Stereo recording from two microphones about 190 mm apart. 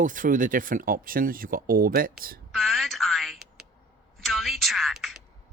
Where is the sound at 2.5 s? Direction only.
Centre (ahead or behind).